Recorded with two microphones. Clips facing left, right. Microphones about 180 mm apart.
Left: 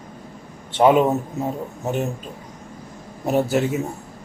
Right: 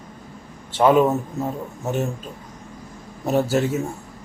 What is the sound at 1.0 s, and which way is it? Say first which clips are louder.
Speech: right 1 dB; 20° left (ahead or behind).